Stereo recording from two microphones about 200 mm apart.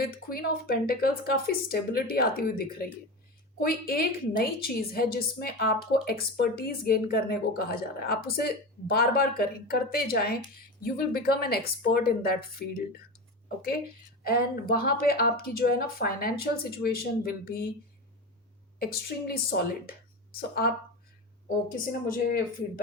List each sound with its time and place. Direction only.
0.0 s a woman's voice: 50° left (ahead or behind)
14.3 s a woman's voice: 50° left (ahead or behind)
19.3 s a woman's voice: 50° left (ahead or behind)